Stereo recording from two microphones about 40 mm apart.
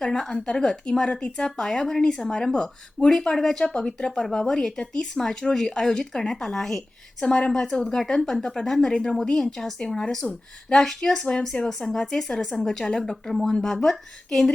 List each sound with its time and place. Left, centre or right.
0.0 s speech: centre